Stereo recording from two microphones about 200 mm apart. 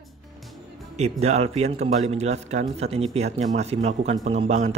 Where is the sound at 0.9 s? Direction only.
35° right (ahead or behind).